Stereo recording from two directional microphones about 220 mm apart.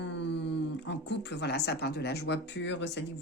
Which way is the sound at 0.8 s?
50° left (ahead or behind).